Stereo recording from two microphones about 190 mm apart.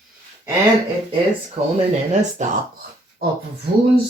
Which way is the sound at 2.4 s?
40° right (ahead or behind).